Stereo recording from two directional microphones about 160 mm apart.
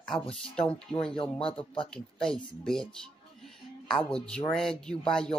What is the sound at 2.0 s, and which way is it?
Speech, 5° left (ahead or behind).